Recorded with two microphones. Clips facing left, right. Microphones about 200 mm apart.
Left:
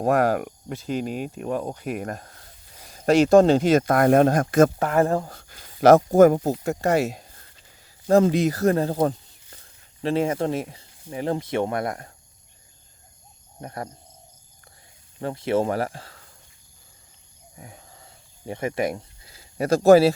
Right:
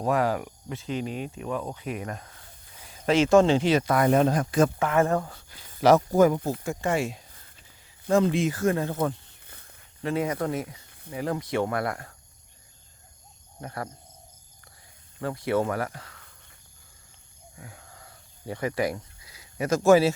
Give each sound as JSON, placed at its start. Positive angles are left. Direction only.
{"t": 0.0, "sound": "speech", "side_deg": 50}
{"t": 5.3, "sound": "speech", "side_deg": 50}
{"t": 6.8, "sound": "speech", "side_deg": 40}
{"t": 13.6, "sound": "speech", "side_deg": 20}
{"t": 15.2, "sound": "speech", "side_deg": 25}
{"t": 17.6, "sound": "goat", "side_deg": 20}